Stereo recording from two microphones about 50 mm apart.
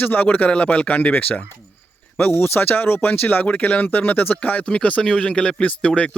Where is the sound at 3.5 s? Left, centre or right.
Left.